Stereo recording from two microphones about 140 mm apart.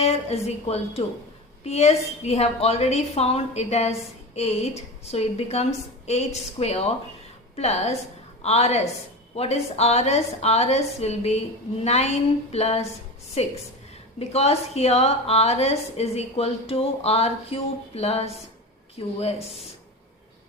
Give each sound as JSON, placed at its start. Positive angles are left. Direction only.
{"t": 0.0, "sound": "a woman's voice", "side_deg": 50}